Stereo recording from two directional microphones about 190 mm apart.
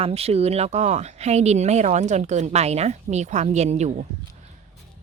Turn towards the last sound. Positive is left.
turn(degrees=-35)  # may be behind; listen again after turning